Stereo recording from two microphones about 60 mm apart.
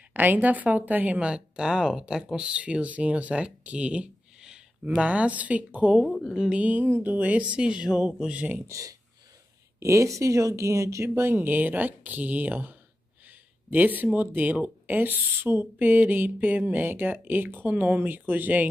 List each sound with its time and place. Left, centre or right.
0.1 s speech: right
1.2 s speech: centre
6.2 s speech: centre
6.6 s speech: right
8.6 s speech: right